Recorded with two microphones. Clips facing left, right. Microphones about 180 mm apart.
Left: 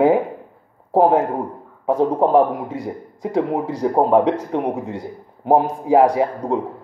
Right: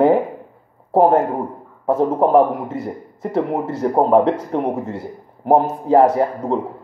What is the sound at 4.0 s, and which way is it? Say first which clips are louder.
Speech: right 1 dB; 5° left (ahead or behind).